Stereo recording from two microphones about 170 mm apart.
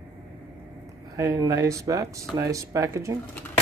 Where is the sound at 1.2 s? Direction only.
20° right (ahead or behind).